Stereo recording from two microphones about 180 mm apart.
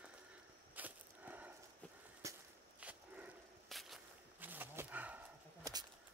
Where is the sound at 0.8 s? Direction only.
10° right (ahead or behind).